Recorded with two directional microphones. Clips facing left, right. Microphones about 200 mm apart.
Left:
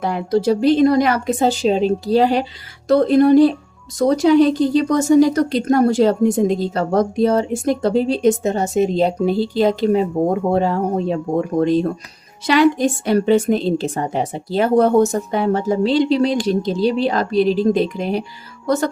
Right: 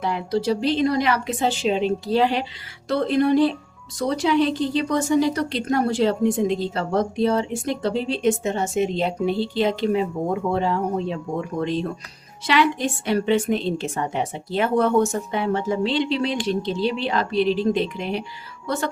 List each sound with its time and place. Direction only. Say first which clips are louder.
0.0 s a woman's voice: left 5 dB; 50° left (ahead or behind)